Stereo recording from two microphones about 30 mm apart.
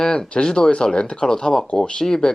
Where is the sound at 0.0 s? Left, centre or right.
Left.